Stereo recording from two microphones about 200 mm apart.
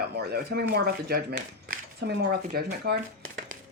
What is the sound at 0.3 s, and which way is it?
Speech, 50° right (ahead or behind).